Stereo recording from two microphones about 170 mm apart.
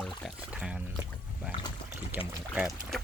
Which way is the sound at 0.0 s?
5° left (ahead or behind).